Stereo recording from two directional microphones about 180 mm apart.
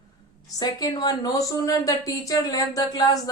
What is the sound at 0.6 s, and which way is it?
Speech, 20° left (ahead or behind).